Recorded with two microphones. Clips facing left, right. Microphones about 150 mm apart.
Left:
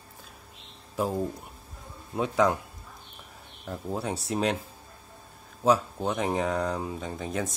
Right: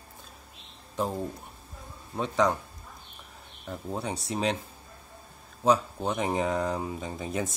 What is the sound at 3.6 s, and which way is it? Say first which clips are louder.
Speech: left 2 dB; centre (ahead or behind).